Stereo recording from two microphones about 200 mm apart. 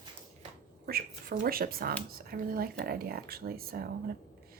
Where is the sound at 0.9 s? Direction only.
50° right (ahead or behind).